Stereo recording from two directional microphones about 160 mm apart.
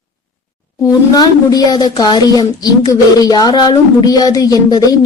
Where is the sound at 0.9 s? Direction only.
25° left (ahead or behind).